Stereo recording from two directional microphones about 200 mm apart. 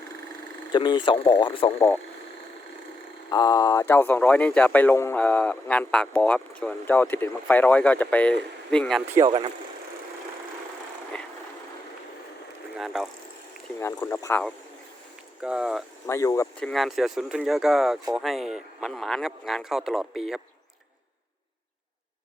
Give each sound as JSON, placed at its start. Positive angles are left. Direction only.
{"t": 0.7, "sound": "speech", "side_deg": 25}
{"t": 3.2, "sound": "speech", "side_deg": 20}
{"t": 9.1, "sound": "speech", "side_deg": -20}
{"t": 12.7, "sound": "vehicle", "side_deg": 0}
{"t": 13.7, "sound": "speech", "side_deg": 15}
{"t": 15.4, "sound": "speech", "side_deg": -5}
{"t": 16.0, "sound": "speech", "side_deg": 15}